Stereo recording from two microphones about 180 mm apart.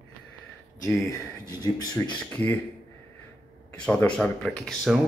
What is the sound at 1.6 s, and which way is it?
Speech, 20° left (ahead or behind).